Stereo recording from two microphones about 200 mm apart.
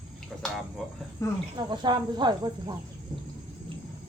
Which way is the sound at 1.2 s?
15° left (ahead or behind).